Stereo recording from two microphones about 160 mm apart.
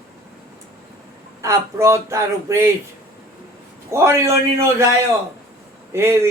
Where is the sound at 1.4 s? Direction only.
20° right (ahead or behind).